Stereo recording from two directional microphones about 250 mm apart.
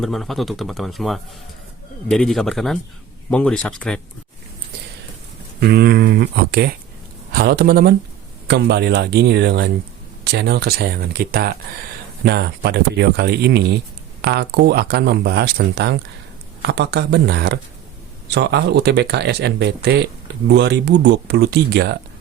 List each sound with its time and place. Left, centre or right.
0.0 s speech: centre
5.5 s speech: right